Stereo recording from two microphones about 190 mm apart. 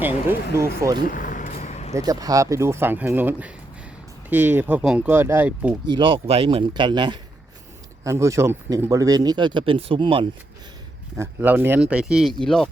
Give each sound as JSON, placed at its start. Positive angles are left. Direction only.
{"t": 0.0, "sound": "speech", "side_deg": -10}
{"t": 1.0, "sound": "vehicle", "side_deg": 45}
{"t": 2.0, "sound": "speech", "side_deg": -20}
{"t": 5.9, "sound": "speech", "side_deg": -25}
{"t": 11.2, "sound": "speech", "side_deg": -10}